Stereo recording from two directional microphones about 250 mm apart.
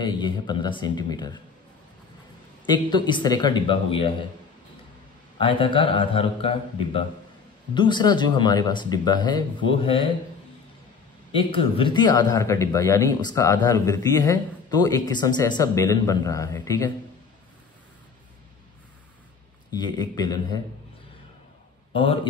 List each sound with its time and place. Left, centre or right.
0.0 s a man's voice: centre
2.6 s a man's voice: centre
5.4 s a man's voice: centre
11.3 s a man's voice: left
19.7 s a man's voice: centre
21.9 s a man's voice: left